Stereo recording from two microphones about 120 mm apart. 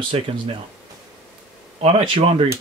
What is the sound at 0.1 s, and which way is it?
Speech, 55° right (ahead or behind).